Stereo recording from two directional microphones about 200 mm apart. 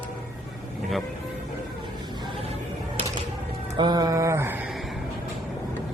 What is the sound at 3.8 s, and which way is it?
Mantra, 20° right (ahead or behind).